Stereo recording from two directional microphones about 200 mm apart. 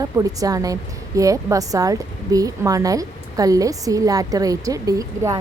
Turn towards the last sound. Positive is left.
turn(degrees=-15)  # may be behind; listen again after turning